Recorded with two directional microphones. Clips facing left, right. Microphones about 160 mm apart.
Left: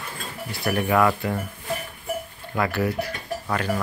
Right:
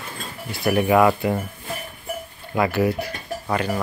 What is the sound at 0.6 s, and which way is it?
Speech, 15° right (ahead or behind).